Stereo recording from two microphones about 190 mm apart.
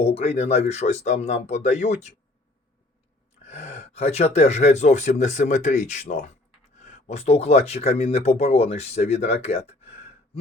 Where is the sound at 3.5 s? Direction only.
35° left (ahead or behind).